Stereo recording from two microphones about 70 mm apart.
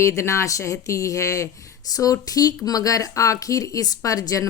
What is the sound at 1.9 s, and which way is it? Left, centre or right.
Speech, left.